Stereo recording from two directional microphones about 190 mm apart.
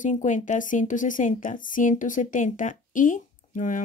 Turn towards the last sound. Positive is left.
turn(degrees=45)  # may be behind; listen again after turning